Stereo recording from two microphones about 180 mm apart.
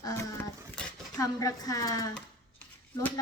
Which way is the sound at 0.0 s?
15° left (ahead or behind).